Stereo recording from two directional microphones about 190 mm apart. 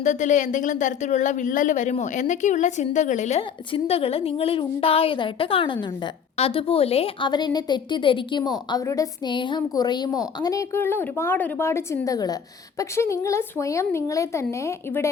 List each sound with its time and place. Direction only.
0.0 s a woman's voice: 40° left (ahead or behind); by 15.1 s 15° left (ahead or behind)